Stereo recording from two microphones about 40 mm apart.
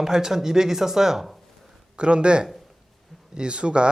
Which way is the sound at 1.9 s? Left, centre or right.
Right.